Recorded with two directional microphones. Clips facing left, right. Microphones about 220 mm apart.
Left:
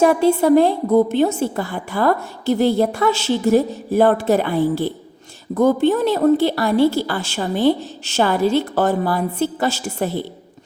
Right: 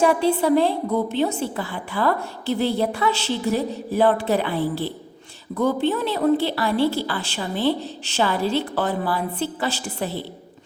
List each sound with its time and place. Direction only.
0.0 s a woman's voice: 45° left (ahead or behind)